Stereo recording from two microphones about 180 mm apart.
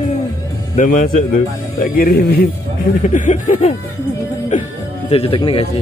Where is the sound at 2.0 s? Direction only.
60° left (ahead or behind).